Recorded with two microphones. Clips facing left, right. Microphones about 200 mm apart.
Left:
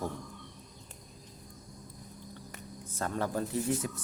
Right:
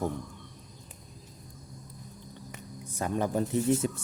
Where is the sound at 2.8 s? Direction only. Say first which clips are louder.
Right 4 dB; 15° right (ahead or behind).